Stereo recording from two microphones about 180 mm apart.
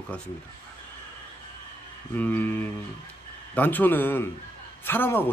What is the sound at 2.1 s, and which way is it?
Speech, 10° left (ahead or behind).